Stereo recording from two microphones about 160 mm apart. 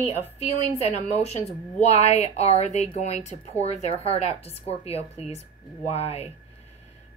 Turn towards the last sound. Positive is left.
turn(degrees=40)  # may be behind; listen again after turning